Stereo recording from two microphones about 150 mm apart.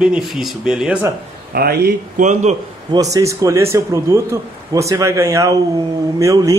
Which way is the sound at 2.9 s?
25° right (ahead or behind).